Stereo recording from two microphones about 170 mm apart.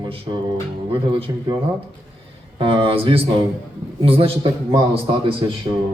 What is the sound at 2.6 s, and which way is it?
A man's voice, 30° right (ahead or behind).